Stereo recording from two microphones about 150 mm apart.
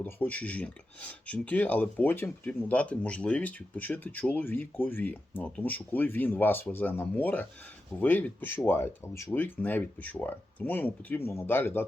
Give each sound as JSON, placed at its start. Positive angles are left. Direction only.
{"t": 0.0, "sound": "speech", "side_deg": 10}